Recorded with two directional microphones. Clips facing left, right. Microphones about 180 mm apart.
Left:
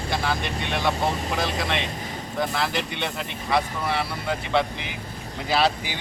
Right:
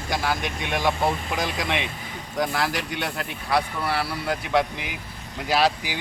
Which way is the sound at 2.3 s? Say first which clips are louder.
Right 1 dB; 10° right (ahead or behind).